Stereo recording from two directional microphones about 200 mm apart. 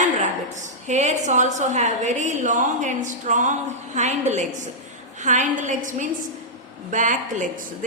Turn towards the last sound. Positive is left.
turn(degrees=-40)  # may be behind; listen again after turning